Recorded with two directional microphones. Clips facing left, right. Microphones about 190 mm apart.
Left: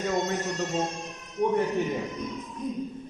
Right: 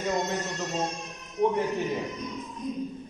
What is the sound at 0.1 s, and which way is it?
Music, centre (ahead or behind).